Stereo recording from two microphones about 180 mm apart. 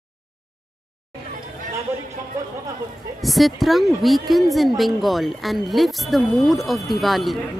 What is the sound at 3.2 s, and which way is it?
A woman's voice, centre (ahead or behind).